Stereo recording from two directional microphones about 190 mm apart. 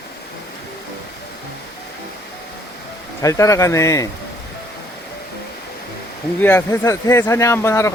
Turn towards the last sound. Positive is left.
turn(degrees=15)  # may be behind; listen again after turning